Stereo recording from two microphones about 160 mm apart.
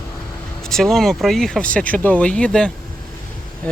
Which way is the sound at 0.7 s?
Centre (ahead or behind).